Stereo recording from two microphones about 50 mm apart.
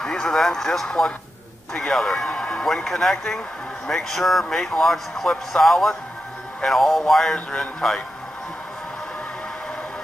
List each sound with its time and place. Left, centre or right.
0.0 s speech: centre
6.6 s music: centre
7.5 s speech: centre